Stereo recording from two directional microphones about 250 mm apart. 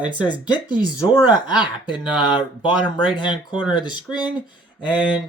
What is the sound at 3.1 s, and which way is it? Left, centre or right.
Speech, centre.